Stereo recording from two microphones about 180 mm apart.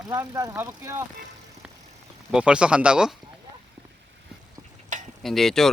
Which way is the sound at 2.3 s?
5° right (ahead or behind).